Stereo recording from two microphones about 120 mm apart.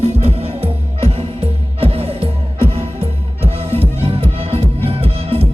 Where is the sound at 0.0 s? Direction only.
55° right (ahead or behind).